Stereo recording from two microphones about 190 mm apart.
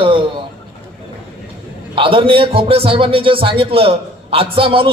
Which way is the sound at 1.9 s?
30° right (ahead or behind).